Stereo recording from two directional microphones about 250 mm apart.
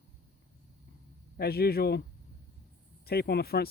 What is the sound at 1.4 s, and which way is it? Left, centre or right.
Speech, left.